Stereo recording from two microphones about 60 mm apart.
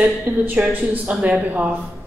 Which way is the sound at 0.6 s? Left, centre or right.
Right.